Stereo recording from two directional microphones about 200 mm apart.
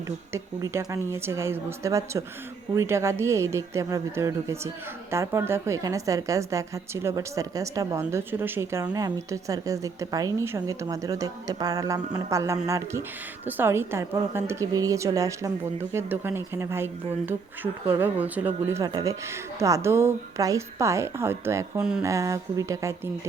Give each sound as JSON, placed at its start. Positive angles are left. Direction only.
{"t": 0.3, "sound": "a woman's voice", "side_deg": -15}